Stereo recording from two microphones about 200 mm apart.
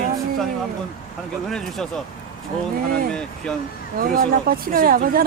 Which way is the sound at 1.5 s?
5° left (ahead or behind).